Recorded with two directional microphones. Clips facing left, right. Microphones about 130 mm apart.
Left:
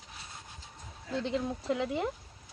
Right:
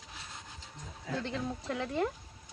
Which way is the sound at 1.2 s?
15° left (ahead or behind).